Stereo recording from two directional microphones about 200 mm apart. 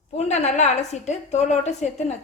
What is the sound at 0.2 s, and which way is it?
A woman's voice, 35° left (ahead or behind).